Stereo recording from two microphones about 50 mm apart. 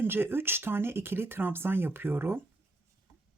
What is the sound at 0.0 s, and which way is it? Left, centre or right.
Speech, right.